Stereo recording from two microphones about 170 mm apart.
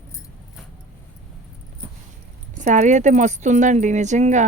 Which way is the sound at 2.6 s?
45° right (ahead or behind).